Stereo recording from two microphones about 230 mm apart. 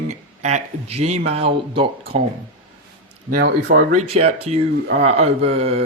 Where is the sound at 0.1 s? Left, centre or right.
Right.